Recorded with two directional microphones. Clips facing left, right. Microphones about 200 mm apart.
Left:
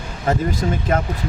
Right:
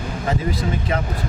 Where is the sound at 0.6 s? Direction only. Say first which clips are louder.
Left 3 dB; 45° left (ahead or behind).